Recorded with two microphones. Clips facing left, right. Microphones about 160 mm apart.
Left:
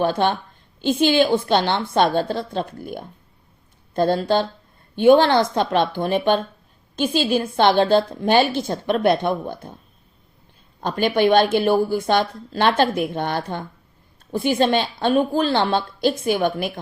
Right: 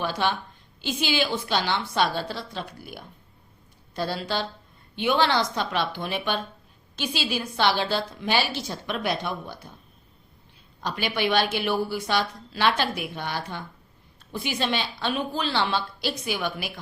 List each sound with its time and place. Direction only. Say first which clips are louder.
0.0 s a woman's voice: left 7 dB; 50° left (ahead or behind)
10.8 s a woman's voice: left 9 dB; 50° left (ahead or behind)